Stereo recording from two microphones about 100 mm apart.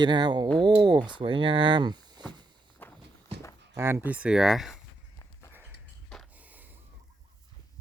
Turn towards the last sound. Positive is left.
turn(degrees=-15)  # may be behind; listen again after turning